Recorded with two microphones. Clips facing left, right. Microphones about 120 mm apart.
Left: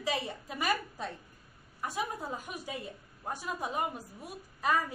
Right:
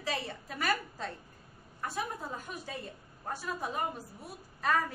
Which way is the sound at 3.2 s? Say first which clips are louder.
Even; 15° left (ahead or behind).